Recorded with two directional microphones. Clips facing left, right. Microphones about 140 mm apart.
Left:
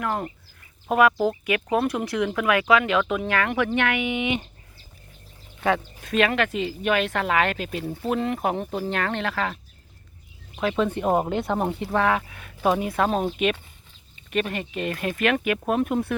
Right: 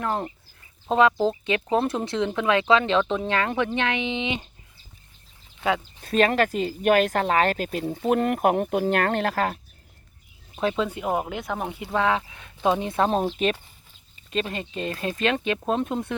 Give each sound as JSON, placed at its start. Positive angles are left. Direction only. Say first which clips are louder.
{"t": 0.0, "sound": "speech", "louder": "even", "side_deg": -25}
{"t": 5.5, "sound": "speech", "louder": "left 2 dB", "side_deg": -10}
{"t": 6.0, "sound": "speech", "louder": "right 2 dB", "side_deg": -35}
{"t": 8.1, "sound": "speech", "louder": "right 4 dB", "side_deg": -55}
{"t": 10.5, "sound": "a sound", "louder": "right 1 dB", "side_deg": -30}
{"t": 10.8, "sound": "speech", "louder": "left 3 dB", "side_deg": -10}
{"t": 11.9, "sound": "speech", "louder": "even", "side_deg": -20}
{"t": 14.3, "sound": "speech", "louder": "left 2 dB", "side_deg": -25}